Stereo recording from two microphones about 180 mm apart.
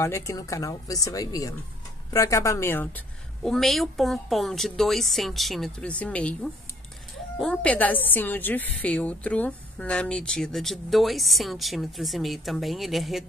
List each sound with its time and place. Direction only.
0.0 s speech: 15° left (ahead or behind)
3.4 s a woman's voice: centre (ahead or behind)